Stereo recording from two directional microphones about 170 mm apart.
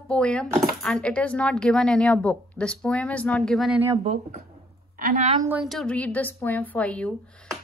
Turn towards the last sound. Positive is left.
turn(degrees=5)  # may be behind; listen again after turning